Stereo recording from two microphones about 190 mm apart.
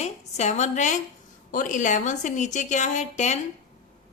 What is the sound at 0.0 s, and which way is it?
A woman's voice, 35° left (ahead or behind).